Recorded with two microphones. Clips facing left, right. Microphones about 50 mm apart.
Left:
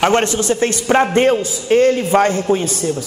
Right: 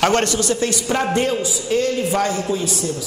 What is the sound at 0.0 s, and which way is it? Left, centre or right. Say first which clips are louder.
A man's voice: left 3 dB; left.